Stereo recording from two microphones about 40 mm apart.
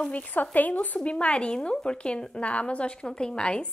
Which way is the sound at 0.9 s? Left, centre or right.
Left.